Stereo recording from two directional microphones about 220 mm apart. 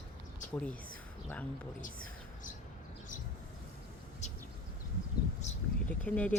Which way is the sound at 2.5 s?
35° left (ahead or behind).